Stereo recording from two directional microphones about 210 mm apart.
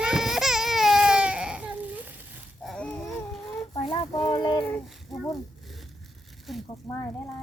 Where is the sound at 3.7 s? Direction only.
25° left (ahead or behind).